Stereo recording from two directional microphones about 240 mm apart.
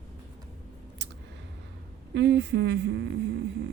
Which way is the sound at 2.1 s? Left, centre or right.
Right.